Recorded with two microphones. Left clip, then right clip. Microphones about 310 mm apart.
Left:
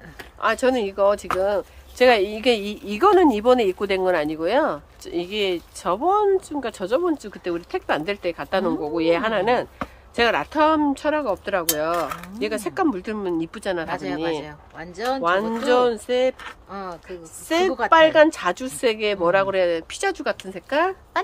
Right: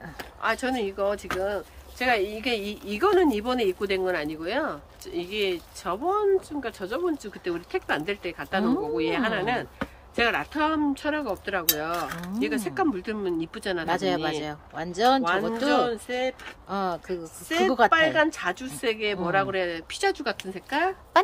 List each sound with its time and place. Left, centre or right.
0.4 s speech: centre
13.8 s speech: right
15.7 s speech: centre
16.7 s speech: right
17.5 s speech: centre